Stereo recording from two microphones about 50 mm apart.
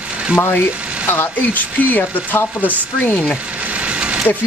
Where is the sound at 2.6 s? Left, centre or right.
Right.